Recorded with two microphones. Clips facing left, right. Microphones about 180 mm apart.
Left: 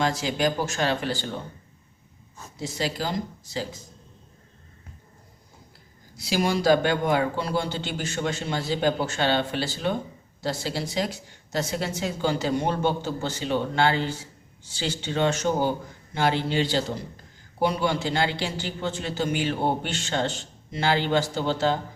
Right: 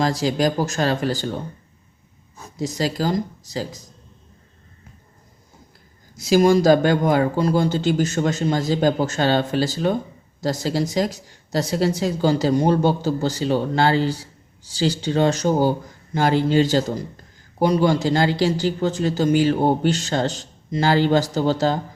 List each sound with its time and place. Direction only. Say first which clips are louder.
0.0 s a woman's voice: right 5 dB; 35° right (ahead or behind)
2.6 s a woman's voice: right 6 dB; 40° right (ahead or behind)
6.1 s a woman's voice: right 10 dB; 45° right (ahead or behind)